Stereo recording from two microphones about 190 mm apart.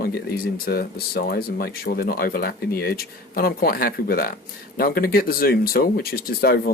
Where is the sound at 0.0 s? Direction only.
55° left (ahead or behind).